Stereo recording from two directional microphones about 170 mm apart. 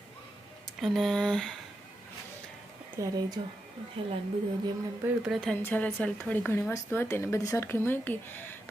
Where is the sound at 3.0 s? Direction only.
20° right (ahead or behind); by 4.1 s 35° right (ahead or behind).